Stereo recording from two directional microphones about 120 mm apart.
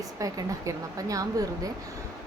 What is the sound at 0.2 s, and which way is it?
A woman's voice, 30° right (ahead or behind).